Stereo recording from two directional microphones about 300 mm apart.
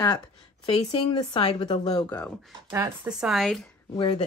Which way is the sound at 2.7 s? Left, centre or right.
Centre.